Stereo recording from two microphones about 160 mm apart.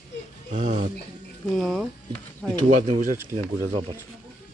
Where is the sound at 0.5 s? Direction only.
50° right (ahead or behind).